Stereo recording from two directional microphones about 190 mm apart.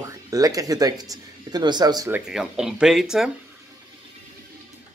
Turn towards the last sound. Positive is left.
turn(degrees=0)  # may be behind; listen again after turning